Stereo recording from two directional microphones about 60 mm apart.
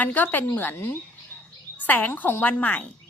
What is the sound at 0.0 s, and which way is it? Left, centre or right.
A woman's voice, left.